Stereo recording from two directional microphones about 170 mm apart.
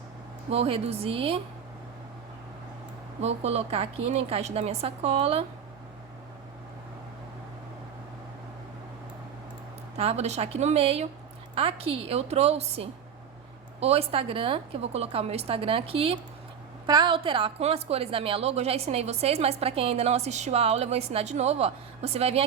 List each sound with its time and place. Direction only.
0.5 s a woman's voice: 35° right (ahead or behind)
3.2 s a woman's voice: 40° right (ahead or behind)
10.0 s a woman's voice: 40° right (ahead or behind)